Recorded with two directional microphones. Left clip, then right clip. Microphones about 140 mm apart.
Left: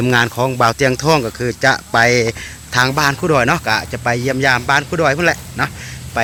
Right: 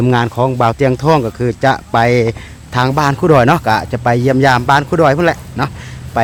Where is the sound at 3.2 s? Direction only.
40° right (ahead or behind).